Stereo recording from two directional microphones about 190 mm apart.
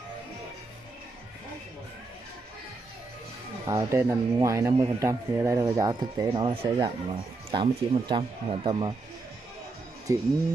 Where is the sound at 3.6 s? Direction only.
15° right (ahead or behind).